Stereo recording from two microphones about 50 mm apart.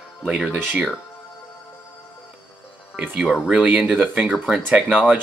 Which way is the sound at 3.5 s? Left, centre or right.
Centre.